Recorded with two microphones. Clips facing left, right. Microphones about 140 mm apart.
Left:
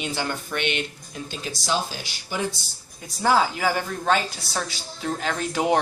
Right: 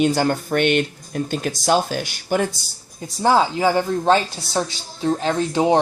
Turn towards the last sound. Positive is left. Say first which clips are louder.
# right 5 dB
turn(degrees=-25)  # may be behind; listen again after turning